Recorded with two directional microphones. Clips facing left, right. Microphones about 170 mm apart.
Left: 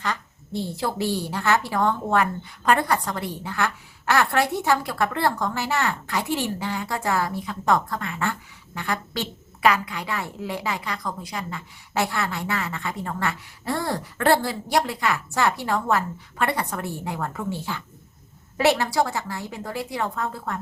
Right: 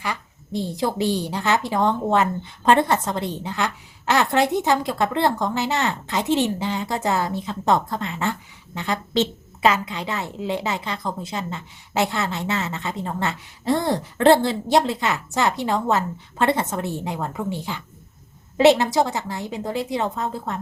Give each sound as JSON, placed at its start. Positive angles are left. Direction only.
{"t": 0.0, "sound": "a woman's voice", "side_deg": -15}